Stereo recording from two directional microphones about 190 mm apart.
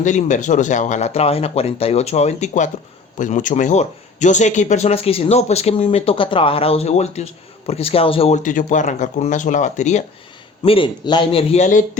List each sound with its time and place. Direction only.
0.0 s speech: 40° left (ahead or behind)
10.6 s a man's voice: 25° left (ahead or behind)